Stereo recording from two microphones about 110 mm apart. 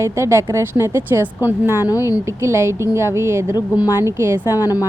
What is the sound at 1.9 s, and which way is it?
Speech, 30° left (ahead or behind).